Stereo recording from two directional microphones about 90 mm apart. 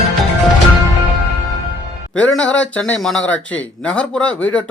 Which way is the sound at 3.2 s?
15° left (ahead or behind).